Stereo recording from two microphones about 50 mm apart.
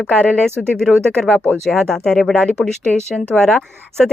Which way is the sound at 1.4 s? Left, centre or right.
Left.